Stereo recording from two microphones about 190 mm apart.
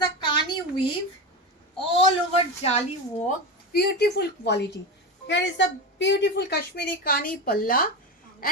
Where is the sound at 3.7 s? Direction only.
55° left (ahead or behind).